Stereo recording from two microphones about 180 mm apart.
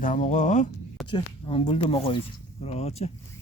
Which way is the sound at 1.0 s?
30° left (ahead or behind).